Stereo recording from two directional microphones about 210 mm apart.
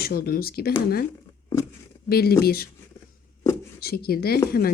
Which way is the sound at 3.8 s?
50° left (ahead or behind).